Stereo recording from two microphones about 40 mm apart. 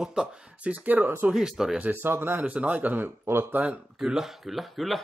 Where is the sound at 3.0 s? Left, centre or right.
Right.